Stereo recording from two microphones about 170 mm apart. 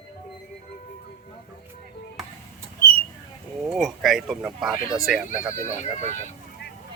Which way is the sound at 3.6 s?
Centre (ahead or behind).